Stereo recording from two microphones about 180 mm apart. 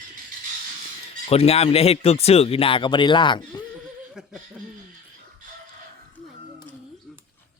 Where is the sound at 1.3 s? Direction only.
35° left (ahead or behind).